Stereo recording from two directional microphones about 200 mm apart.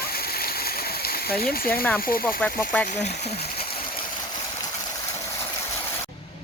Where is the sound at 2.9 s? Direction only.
35° left (ahead or behind).